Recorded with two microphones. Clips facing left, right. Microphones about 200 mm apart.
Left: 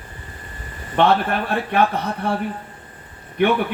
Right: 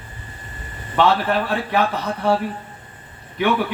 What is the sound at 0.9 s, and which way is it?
Speech, 55° left (ahead or behind).